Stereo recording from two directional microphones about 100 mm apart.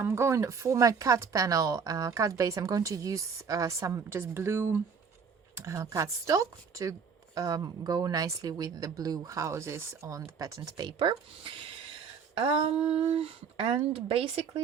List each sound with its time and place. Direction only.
0.0 s speech: 25° right (ahead or behind); by 14.4 s 75° right (ahead or behind)